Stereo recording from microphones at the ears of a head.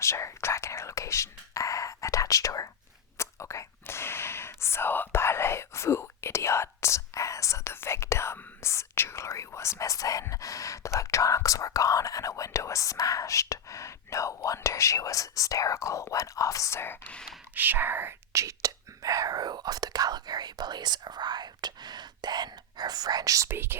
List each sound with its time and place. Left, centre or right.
0.0 s speech: left
17.5 s speech: right